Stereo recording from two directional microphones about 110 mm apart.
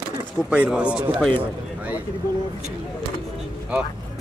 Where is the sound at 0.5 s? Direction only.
10° right (ahead or behind).